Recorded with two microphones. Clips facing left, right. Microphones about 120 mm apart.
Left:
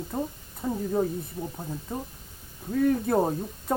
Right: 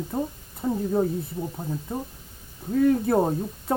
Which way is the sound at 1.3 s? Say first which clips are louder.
Right 3 dB; 10° right (ahead or behind).